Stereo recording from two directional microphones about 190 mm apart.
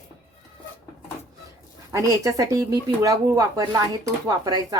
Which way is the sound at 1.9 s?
15° right (ahead or behind).